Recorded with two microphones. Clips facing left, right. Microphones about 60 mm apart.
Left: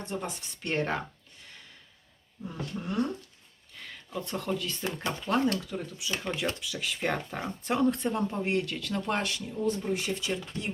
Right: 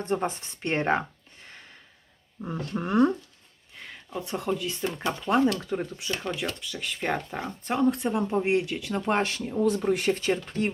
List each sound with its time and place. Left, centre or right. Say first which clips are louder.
0.0 s speech: right 8 dB; right
2.4 s speech: right 5 dB; right
3.8 s speech: right 2 dB; centre
5.5 s speech: right 5 dB; right
6.2 s speech: right 1 dB; centre
8.3 s speech: right 5 dB; centre
9.0 s speech: right 6 dB; right
9.6 s speech: right 6 dB; right
10.2 s speech: right 7 dB; right